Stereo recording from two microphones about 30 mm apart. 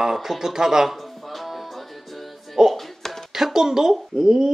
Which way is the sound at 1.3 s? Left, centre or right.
Centre.